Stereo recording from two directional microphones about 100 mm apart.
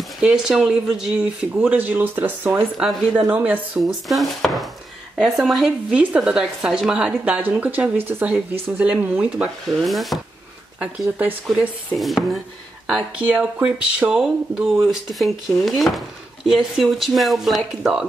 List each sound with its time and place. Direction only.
0.2 s speech: 5° right (ahead or behind)
2.8 s speech: centre (ahead or behind)
3.3 s speech: 15° right (ahead or behind)
3.8 s speech: centre (ahead or behind)
10.8 s speech: 15° right (ahead or behind)
12.0 s speech: centre (ahead or behind)
13.3 s speech: 10° right (ahead or behind)